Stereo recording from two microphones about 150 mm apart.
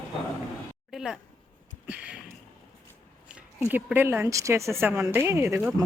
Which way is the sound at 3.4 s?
10° right (ahead or behind).